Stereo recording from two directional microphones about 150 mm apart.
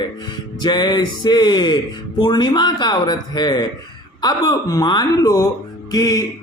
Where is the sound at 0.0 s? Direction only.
30° left (ahead or behind).